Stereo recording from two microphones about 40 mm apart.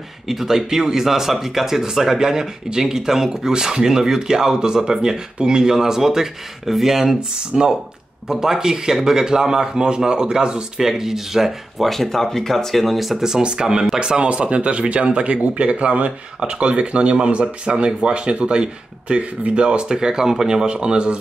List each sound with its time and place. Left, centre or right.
0.3 s speech: centre
10.8 s speech: centre
11.9 s speech: centre
13.2 s speech: centre